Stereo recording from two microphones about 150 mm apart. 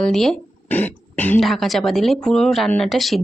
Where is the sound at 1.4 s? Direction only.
Centre (ahead or behind).